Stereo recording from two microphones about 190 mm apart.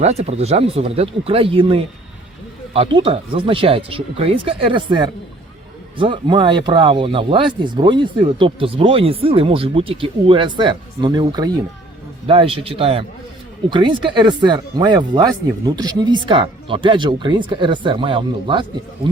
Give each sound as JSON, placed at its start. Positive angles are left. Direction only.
{"t": 0.0, "sound": "speech", "side_deg": -35}